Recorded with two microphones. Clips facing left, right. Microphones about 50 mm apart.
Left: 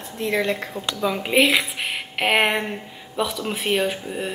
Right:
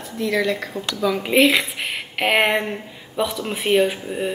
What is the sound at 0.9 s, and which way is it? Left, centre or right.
Speech, left.